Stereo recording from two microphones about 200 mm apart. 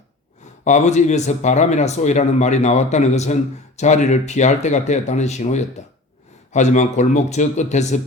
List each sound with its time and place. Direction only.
0.6 s speech: 35° left (ahead or behind)